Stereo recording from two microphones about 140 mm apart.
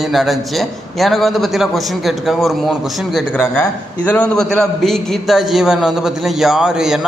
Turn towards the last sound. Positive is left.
turn(degrees=-5)  # may be behind; listen again after turning